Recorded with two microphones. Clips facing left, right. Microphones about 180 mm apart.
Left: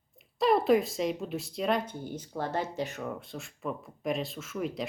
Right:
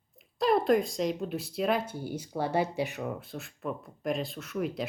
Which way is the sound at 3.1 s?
Centre (ahead or behind).